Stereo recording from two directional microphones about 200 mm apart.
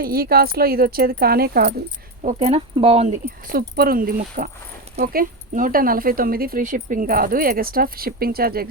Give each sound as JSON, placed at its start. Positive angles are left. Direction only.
{"t": 0.0, "sound": "speech", "side_deg": -50}
{"t": 2.2, "sound": "speech", "side_deg": -30}
{"t": 3.4, "sound": "speech", "side_deg": -45}